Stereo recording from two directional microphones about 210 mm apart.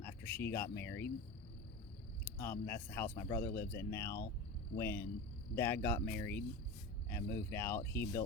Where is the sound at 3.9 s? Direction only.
15° left (ahead or behind).